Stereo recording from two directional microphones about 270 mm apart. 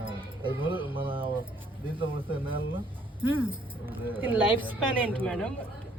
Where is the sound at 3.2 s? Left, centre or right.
Centre.